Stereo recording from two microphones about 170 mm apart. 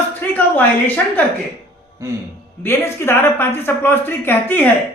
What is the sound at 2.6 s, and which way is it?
Speech, 15° left (ahead or behind).